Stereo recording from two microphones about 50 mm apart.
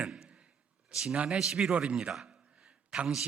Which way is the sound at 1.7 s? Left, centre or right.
Centre.